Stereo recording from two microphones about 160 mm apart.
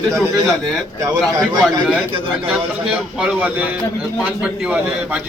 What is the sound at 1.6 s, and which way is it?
A man's voice, 5° right (ahead or behind).